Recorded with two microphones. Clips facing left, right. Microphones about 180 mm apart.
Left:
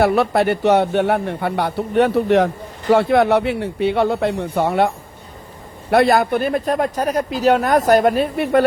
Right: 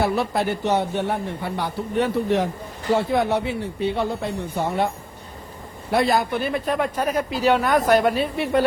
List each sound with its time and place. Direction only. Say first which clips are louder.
0.0 s a man's voice: left 6 dB; 65° left (ahead or behind)
5.9 s speech: left 6 dB; 65° left (ahead or behind)